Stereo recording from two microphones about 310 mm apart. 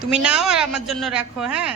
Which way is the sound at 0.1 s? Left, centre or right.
Centre.